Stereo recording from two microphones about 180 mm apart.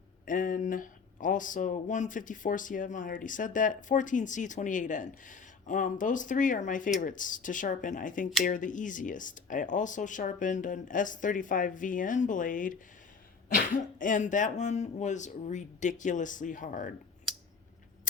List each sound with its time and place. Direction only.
0.3 s speech: 50° left (ahead or behind)